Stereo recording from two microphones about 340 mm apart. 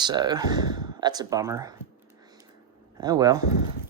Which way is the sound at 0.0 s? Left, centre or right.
Centre.